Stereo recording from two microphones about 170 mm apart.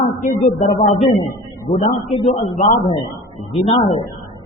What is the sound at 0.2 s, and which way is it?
A man's voice, 45° left (ahead or behind).